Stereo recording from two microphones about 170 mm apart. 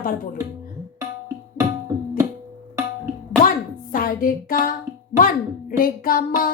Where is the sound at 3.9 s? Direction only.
55° left (ahead or behind).